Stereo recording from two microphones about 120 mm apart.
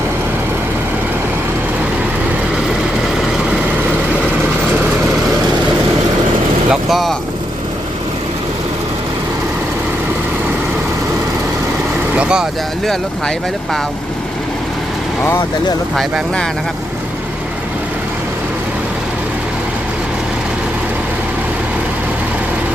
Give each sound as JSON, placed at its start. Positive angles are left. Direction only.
{"t": 6.7, "sound": "vehicle", "side_deg": 0}
{"t": 12.1, "sound": "vehicle", "side_deg": -10}
{"t": 16.0, "sound": "speech", "side_deg": 5}